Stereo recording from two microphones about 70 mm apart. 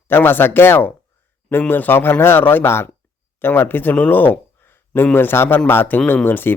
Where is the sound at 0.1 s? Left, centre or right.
Left.